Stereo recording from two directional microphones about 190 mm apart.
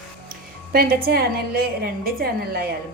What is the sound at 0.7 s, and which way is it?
A woman's voice, 50° right (ahead or behind).